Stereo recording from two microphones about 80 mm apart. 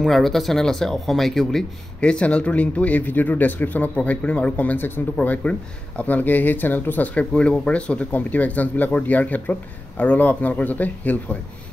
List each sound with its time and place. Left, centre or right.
0.0 s speech: centre; by 11.1 s left